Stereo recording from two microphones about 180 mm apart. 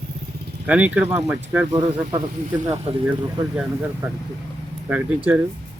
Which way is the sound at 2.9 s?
35° right (ahead or behind).